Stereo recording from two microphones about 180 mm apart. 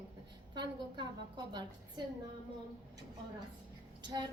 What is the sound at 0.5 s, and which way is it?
Speech, 25° right (ahead or behind).